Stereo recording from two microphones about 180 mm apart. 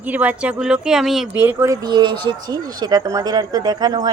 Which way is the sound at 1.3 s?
15° right (ahead or behind).